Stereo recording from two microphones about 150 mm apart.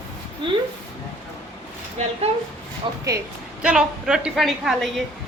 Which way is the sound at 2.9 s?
35° right (ahead or behind).